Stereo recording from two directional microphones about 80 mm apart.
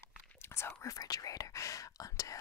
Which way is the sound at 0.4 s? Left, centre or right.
Left.